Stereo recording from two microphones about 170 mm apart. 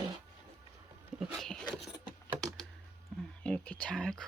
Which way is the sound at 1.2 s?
Centre (ahead or behind).